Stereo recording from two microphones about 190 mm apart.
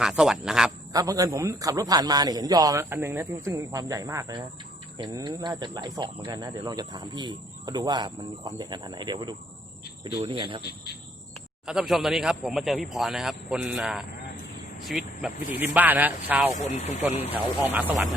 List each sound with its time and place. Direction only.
0.0 s speech: 5° right (ahead or behind)
0.9 s a man's voice: 20° right (ahead or behind)
10.6 s speech: 55° left (ahead or behind)
11.6 s a man's voice: 5° right (ahead or behind)
16.6 s speech: 35° left (ahead or behind)
17.3 s a man's voice: 10° right (ahead or behind)